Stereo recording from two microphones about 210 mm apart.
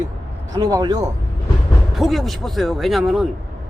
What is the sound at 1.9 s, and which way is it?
Speech, centre (ahead or behind).